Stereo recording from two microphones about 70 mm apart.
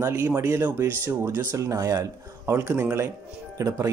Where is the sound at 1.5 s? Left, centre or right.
Right.